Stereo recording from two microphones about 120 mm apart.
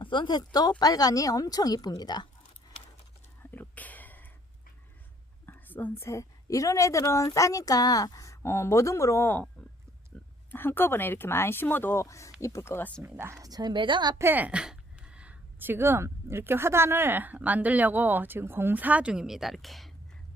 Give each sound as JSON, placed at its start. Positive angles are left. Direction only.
{"t": 0.0, "sound": "speech", "side_deg": 40}
{"t": 3.5, "sound": "a sound", "side_deg": 15}
{"t": 5.5, "sound": "whispering", "side_deg": 15}
{"t": 6.0, "sound": "a woman's voice", "side_deg": 25}
{"t": 10.5, "sound": "a woman's voice", "side_deg": 15}
{"t": 13.0, "sound": "a woman's voice", "side_deg": -20}
{"t": 14.2, "sound": "speech", "side_deg": -15}